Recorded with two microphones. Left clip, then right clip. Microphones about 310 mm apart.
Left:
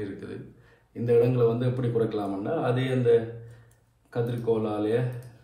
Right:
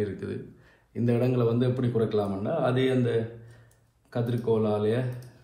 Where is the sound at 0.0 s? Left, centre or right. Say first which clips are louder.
Right 4 dB; right.